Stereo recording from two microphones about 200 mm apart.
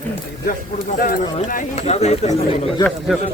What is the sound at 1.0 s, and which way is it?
Speech, 45° left (ahead or behind).